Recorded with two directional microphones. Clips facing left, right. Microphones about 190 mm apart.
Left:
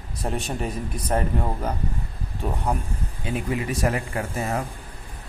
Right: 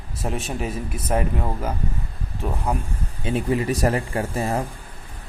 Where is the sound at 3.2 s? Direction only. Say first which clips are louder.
Right 5 dB; 30° right (ahead or behind).